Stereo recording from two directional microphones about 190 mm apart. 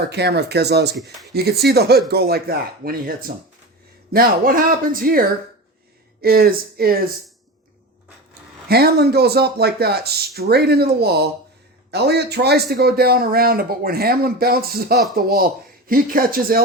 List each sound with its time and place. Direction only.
0.1 s a man's voice: 60° right (ahead or behind)
6.2 s a man's voice: 50° right (ahead or behind)
8.7 s a man's voice: 55° right (ahead or behind)